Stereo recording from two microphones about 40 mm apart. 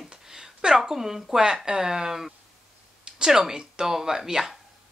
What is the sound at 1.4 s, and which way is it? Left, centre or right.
Speech, centre.